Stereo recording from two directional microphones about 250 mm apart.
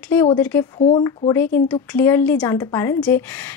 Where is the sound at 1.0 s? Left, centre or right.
Centre.